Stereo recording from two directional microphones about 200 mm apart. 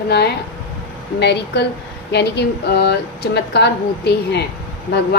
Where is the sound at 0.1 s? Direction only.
55° left (ahead or behind).